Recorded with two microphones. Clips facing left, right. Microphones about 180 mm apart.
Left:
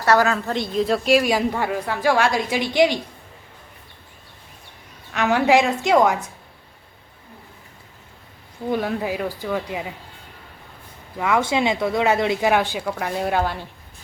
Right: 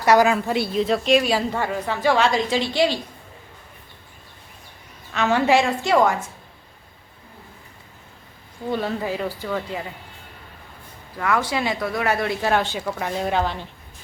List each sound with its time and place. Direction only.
0.0 s a woman's voice: 15° right (ahead or behind); by 3.0 s 15° left (ahead or behind)
5.1 s a woman's voice: 15° left (ahead or behind)
8.7 s a woman's voice: 10° left (ahead or behind)
11.2 s speech: 20° left (ahead or behind)